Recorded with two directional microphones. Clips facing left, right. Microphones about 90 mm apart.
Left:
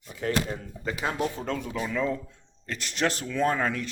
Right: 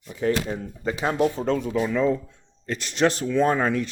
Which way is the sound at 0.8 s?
25° right (ahead or behind).